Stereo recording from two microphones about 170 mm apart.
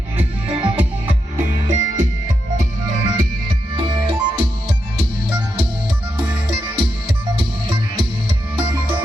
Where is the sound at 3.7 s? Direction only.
30° right (ahead or behind).